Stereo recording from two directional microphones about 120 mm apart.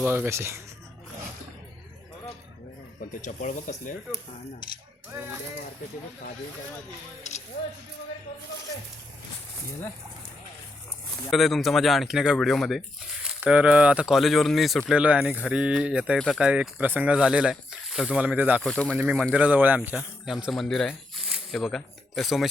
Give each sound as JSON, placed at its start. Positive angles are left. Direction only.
{"t": 0.0, "sound": "speech", "side_deg": -20}
{"t": 3.2, "sound": "speech", "side_deg": 90}
{"t": 7.3, "sound": "speech", "side_deg": 75}
{"t": 11.3, "sound": "speech", "side_deg": 0}
{"t": 16.1, "sound": "speech", "side_deg": 5}
{"t": 16.4, "sound": "speech", "side_deg": -10}
{"t": 18.2, "sound": "speech", "side_deg": -15}
{"t": 18.6, "sound": "speech", "side_deg": 5}
{"t": 18.9, "sound": "speech", "side_deg": -10}